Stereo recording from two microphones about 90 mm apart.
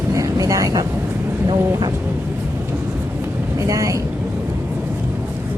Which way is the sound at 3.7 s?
35° right (ahead or behind).